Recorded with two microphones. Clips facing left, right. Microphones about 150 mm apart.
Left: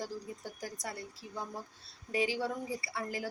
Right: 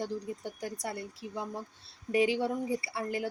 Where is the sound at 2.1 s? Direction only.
25° right (ahead or behind).